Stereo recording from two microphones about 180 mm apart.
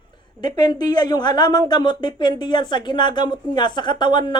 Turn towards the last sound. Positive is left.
turn(degrees=25)  # may be behind; listen again after turning